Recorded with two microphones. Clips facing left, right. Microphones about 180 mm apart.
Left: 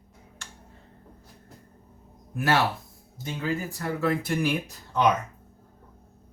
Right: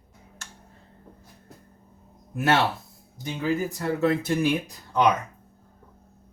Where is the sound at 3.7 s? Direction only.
25° right (ahead or behind).